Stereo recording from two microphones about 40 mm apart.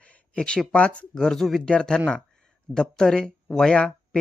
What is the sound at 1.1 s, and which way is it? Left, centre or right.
Speech, centre.